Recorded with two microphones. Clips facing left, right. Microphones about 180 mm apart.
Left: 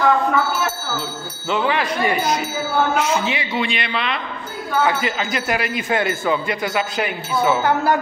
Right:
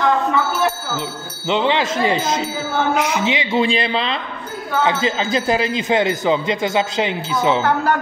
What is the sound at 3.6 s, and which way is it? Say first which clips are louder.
Speech: right 5 dB; 30° right (ahead or behind).